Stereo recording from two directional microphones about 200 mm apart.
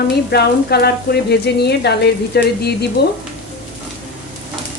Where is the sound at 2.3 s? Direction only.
55° left (ahead or behind).